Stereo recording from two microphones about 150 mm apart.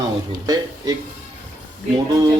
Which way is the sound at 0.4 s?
25° right (ahead or behind).